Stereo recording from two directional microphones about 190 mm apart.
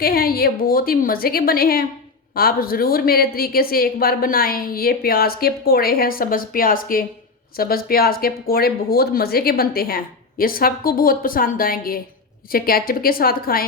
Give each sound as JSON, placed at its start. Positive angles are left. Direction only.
{"t": 0.0, "sound": "a woman's voice", "side_deg": 50}